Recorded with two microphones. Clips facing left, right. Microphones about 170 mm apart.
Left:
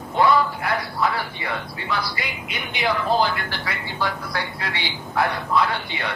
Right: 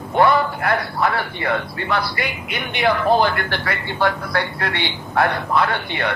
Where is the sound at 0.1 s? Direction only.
60° right (ahead or behind).